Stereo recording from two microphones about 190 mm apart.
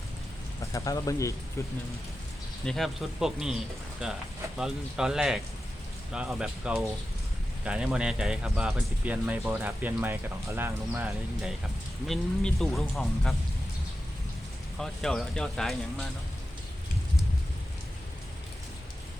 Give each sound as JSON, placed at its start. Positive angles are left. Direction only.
{"t": 0.6, "sound": "speech", "side_deg": 15}
{"t": 2.6, "sound": "speech", "side_deg": 0}
{"t": 12.0, "sound": "speech", "side_deg": 0}
{"t": 14.8, "sound": "speech", "side_deg": 0}